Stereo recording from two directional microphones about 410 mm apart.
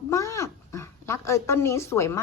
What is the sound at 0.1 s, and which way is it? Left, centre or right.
Speech, centre.